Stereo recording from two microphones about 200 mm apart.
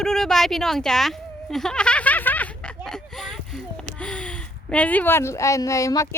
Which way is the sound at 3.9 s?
5° left (ahead or behind).